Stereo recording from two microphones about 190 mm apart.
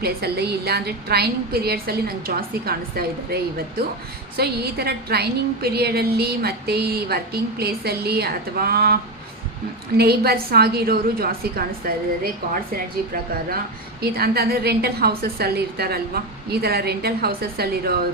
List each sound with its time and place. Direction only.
0.0 s a woman's voice: 55° right (ahead or behind)
10.0 s a woman's voice: 55° right (ahead or behind)
14.0 s a woman's voice: 55° right (ahead or behind)